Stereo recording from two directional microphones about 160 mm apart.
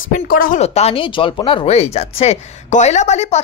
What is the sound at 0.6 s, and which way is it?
Speech, 40° left (ahead or behind).